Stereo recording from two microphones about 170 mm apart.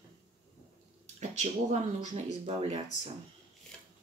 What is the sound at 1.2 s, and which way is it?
Speech, 45° right (ahead or behind).